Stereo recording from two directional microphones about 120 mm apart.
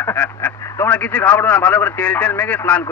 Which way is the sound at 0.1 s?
10° left (ahead or behind).